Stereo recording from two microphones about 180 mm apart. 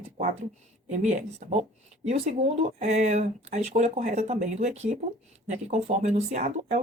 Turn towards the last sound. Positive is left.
turn(degrees=-40)  # may be behind; listen again after turning